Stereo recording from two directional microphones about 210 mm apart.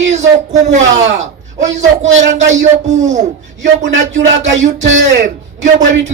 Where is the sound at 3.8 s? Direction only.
60° right (ahead or behind).